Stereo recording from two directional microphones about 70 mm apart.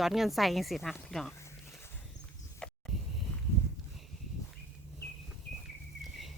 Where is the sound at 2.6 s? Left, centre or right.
Centre.